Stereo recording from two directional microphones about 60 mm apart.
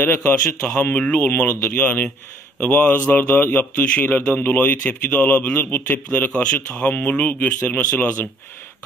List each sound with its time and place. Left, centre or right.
0.3 s speech: left